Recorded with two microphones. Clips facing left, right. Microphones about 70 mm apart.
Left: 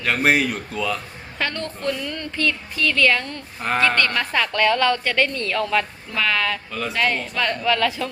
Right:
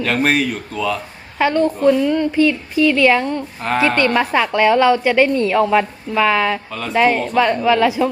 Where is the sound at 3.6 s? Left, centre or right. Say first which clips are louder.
Right 3 dB; centre.